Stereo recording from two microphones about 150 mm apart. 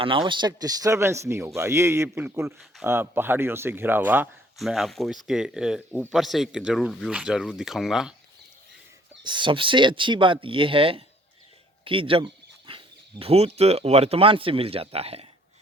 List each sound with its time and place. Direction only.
0.0 s speech: 35° right (ahead or behind); by 4.3 s 15° right (ahead or behind)
4.5 s speech: centre (ahead or behind)
9.2 s speech: 30° right (ahead or behind)